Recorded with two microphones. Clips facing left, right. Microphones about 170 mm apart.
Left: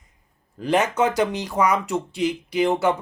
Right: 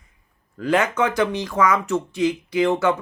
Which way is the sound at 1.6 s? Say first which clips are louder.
Right 1 dB; 15° left (ahead or behind).